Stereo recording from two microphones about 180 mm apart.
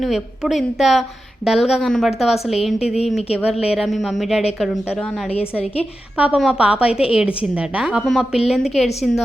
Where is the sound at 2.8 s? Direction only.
35° left (ahead or behind).